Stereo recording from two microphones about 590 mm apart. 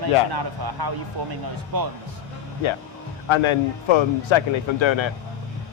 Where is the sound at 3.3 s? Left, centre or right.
Left.